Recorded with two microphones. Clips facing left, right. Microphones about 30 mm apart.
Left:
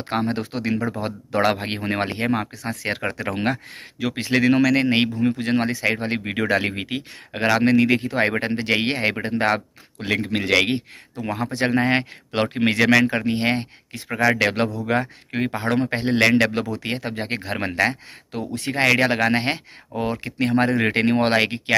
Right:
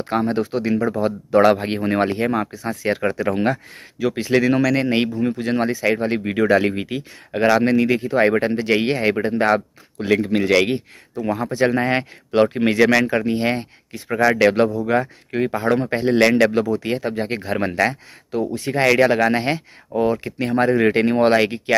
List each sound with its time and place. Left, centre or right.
0.1 s speech: left
1.3 s speech: left
2.5 s speech: left
2.9 s speech: left
8.2 s speech: left
11.5 s speech: left
12.3 s speech: left
14.1 s speech: left
14.5 s speech: left
16.7 s speech: left
17.6 s speech: left
18.5 s speech: left
18.8 s speech: left